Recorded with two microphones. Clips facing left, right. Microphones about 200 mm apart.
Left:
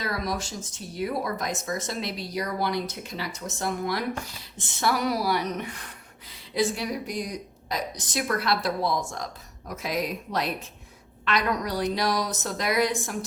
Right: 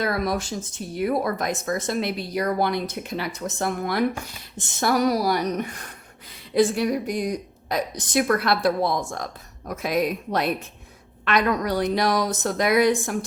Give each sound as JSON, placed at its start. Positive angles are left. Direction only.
{"t": 0.0, "sound": "speech", "side_deg": -55}
{"t": 4.8, "sound": "speech", "side_deg": -45}